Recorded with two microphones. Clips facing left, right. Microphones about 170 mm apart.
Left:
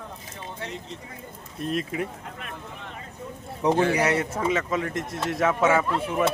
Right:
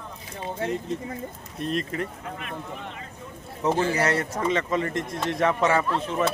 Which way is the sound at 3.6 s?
15° left (ahead or behind).